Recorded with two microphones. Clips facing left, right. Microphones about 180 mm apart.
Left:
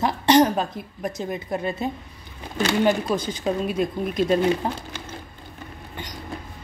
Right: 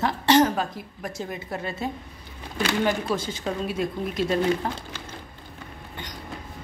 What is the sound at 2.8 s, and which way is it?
A woman's voice, 15° left (ahead or behind).